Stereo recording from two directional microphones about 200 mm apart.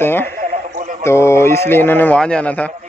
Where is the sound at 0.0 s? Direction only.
10° left (ahead or behind).